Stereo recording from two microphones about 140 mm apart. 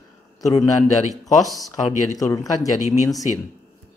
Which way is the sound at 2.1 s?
25° left (ahead or behind).